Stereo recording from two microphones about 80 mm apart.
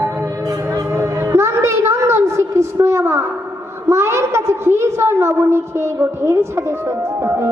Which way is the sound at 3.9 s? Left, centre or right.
Right.